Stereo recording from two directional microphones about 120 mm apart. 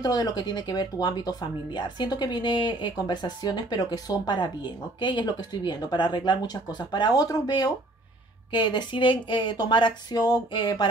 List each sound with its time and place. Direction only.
0.0 s speech: 35° left (ahead or behind)